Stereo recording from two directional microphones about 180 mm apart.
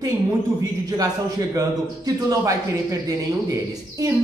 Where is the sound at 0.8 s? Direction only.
20° right (ahead or behind).